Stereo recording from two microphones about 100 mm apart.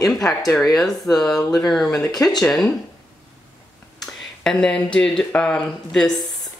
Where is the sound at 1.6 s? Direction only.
5° left (ahead or behind).